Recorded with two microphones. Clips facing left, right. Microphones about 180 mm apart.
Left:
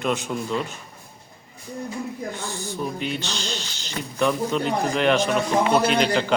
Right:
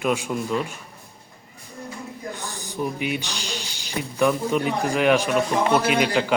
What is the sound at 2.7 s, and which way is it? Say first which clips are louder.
A man's voice: right 3 dB; 15° right (ahead or behind).